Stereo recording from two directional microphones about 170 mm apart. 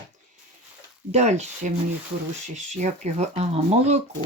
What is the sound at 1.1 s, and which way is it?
Speech, 40° right (ahead or behind).